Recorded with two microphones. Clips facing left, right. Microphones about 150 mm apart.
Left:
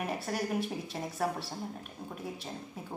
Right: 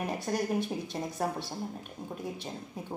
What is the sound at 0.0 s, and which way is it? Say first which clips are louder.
Speech: right 2 dB; 5° left (ahead or behind).